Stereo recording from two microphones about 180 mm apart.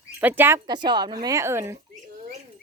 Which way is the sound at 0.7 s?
25° right (ahead or behind).